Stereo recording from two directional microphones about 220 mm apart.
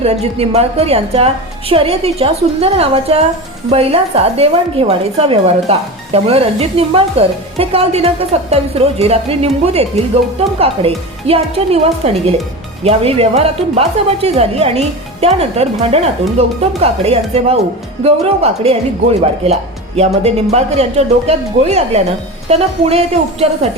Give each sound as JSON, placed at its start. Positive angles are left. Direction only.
{"t": 0.0, "sound": "a woman's voice", "side_deg": -30}